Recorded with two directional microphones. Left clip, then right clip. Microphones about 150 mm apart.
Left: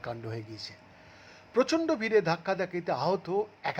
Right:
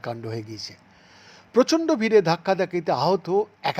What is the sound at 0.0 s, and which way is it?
Speech, 25° right (ahead or behind).